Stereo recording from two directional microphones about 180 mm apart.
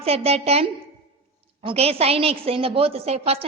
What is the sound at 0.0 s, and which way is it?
A woman's voice, 35° right (ahead or behind).